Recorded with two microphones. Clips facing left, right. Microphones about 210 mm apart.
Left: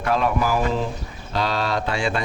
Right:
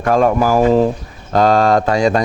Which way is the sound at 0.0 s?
45° right (ahead or behind).